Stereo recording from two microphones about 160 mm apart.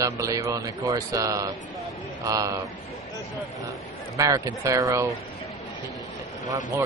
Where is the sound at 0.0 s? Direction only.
20° right (ahead or behind).